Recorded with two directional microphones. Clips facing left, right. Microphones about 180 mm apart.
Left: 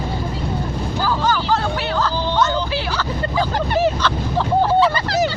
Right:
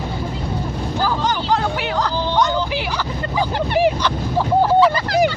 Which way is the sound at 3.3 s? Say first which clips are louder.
Right 1 dB; 15° right (ahead or behind).